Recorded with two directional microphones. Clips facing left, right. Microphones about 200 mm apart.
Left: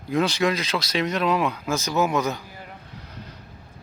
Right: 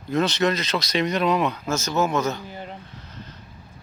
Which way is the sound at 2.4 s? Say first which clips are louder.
Right 6 dB; 25° right (ahead or behind).